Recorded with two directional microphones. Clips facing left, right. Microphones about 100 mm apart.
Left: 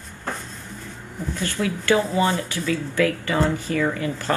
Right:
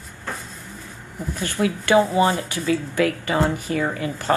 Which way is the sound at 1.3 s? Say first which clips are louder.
Right 2 dB; 20° right (ahead or behind).